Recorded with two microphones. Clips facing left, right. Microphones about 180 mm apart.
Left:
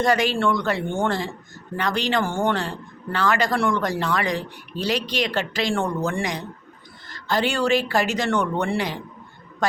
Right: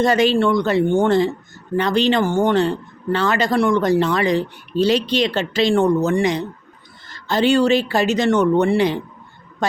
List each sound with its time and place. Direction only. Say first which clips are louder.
0.0 s a man's voice: right 5 dB; 25° right (ahead or behind)